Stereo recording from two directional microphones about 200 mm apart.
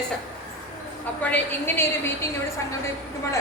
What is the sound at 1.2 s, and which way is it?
Speech, 10° left (ahead or behind).